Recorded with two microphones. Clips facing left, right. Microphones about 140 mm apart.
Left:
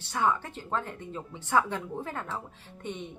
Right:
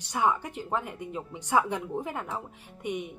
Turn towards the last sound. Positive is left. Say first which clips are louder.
# right 4 dB
turn(degrees=-10)  # may be behind; listen again after turning